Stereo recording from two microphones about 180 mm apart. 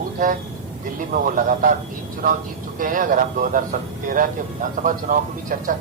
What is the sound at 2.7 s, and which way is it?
A man's voice, 50° right (ahead or behind).